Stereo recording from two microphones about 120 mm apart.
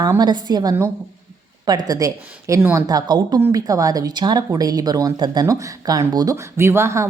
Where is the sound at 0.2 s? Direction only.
35° right (ahead or behind).